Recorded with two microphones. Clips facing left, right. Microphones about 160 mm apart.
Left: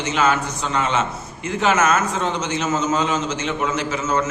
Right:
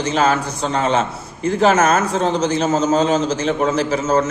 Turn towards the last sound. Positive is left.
turn(degrees=-30)  # may be behind; listen again after turning